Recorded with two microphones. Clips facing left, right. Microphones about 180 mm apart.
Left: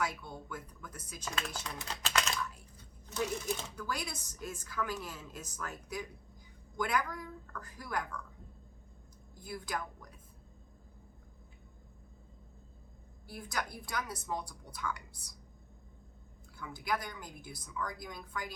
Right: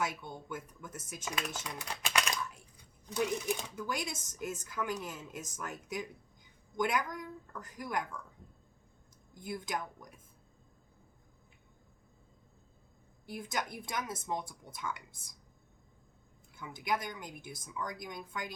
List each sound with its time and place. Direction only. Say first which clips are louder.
0.0 s speech: even; 20° right (ahead or behind)
9.4 s speech: right 2 dB; 20° right (ahead or behind)
13.2 s speech: right 2 dB; 20° right (ahead or behind)
16.6 s speech: right 1 dB; 20° right (ahead or behind)